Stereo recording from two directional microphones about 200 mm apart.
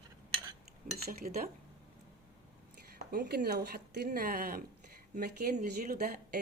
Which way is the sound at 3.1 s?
55° right (ahead or behind).